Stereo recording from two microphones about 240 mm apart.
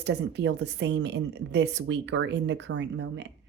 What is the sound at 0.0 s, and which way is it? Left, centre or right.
Speech, right.